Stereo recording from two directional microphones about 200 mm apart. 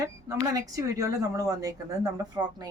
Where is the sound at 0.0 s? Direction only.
15° right (ahead or behind).